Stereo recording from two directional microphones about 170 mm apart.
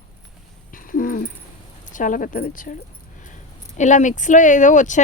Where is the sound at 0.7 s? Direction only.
55° left (ahead or behind).